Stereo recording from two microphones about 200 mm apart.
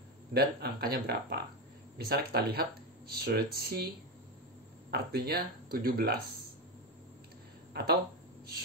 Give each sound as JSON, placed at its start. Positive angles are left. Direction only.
{"t": 0.3, "sound": "speech", "side_deg": -50}
{"t": 4.9, "sound": "speech", "side_deg": -50}
{"t": 7.7, "sound": "speech", "side_deg": -50}